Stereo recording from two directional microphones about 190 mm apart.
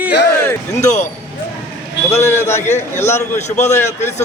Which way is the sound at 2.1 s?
35° left (ahead or behind).